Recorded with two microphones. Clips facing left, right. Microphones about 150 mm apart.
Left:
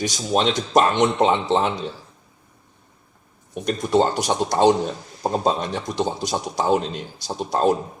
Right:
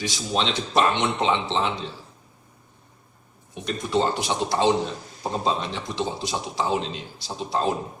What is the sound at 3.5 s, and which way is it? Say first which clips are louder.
Speech: left 5 dB; 50° left (ahead or behind).